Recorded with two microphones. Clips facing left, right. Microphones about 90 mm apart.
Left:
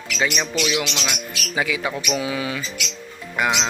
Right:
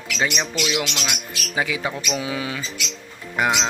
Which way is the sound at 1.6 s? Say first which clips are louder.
Left 1 dB; 30° right (ahead or behind).